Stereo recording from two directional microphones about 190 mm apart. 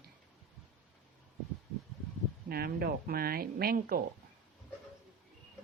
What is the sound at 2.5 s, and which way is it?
A woman's voice, 55° right (ahead or behind).